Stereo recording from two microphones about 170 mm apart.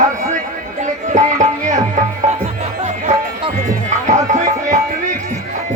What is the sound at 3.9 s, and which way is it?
Music, 45° right (ahead or behind).